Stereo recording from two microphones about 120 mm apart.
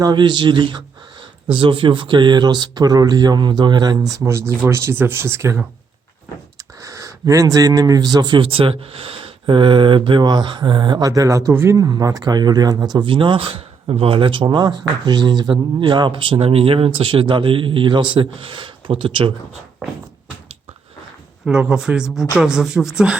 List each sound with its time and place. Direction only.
0.0 s speech: 40° right (ahead or behind)
13.1 s speech: 45° right (ahead or behind)
21.4 s speech: 10° right (ahead or behind)